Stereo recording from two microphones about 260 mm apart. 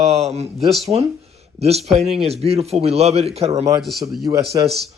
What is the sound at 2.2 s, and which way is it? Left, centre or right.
Speech, right.